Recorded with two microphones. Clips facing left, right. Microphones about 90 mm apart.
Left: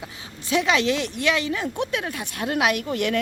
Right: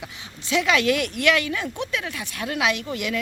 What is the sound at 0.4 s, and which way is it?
Speech, 35° left (ahead or behind).